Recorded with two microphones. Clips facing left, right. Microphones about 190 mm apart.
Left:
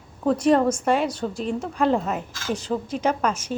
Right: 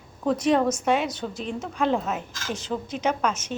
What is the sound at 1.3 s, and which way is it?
Speech, 35° left (ahead or behind).